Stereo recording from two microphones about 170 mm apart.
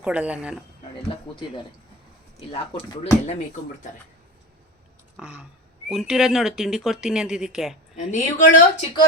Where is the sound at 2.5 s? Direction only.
35° left (ahead or behind).